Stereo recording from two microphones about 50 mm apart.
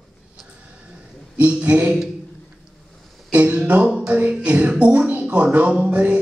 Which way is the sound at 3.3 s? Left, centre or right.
Right.